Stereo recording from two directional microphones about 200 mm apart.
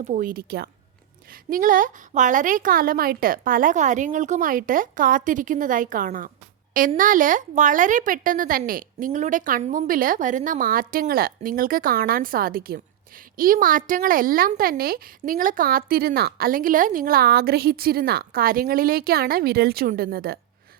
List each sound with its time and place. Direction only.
0.0 s a woman's voice: 40° right (ahead or behind)